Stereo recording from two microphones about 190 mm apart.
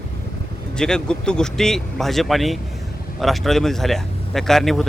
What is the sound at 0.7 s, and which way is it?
Speech, 5° left (ahead or behind).